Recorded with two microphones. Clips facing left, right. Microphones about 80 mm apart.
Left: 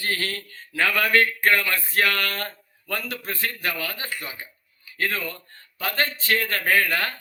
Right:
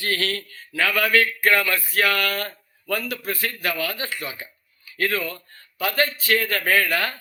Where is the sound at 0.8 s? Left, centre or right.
Left.